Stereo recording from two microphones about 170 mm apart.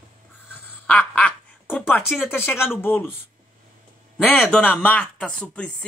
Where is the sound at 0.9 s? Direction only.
10° left (ahead or behind).